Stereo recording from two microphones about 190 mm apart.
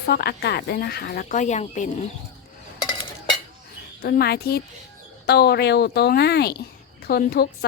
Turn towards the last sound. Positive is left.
turn(degrees=55)  # may be behind; listen again after turning